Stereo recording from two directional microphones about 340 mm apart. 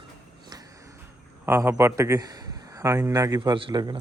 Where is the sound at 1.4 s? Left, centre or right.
Centre.